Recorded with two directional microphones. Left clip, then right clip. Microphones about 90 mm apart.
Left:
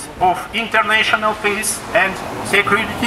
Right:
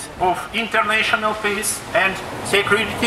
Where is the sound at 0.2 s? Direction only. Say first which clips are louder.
Left 3 dB; 5° left (ahead or behind).